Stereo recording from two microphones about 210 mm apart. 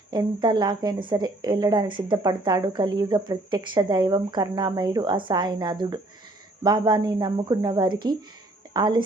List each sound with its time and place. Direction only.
0.1 s speech: 20° right (ahead or behind)